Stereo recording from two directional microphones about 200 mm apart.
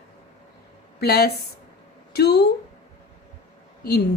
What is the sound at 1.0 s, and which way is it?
A woman's voice, 50° left (ahead or behind).